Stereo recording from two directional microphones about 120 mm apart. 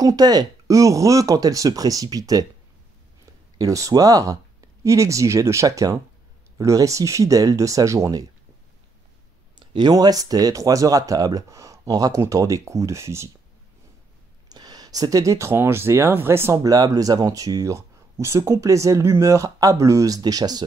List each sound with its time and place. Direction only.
0.0 s speech: 35° right (ahead or behind)
3.5 s speech: 30° right (ahead or behind)
9.6 s speech: 35° right (ahead or behind)
14.5 s speech: 35° right (ahead or behind)